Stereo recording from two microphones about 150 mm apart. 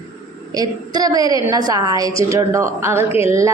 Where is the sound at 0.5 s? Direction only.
25° right (ahead or behind).